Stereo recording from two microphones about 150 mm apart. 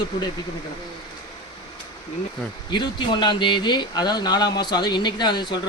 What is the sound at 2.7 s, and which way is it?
Speech, 30° left (ahead or behind).